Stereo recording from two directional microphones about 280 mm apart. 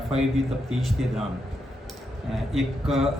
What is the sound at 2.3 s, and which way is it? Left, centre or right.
Speech, centre.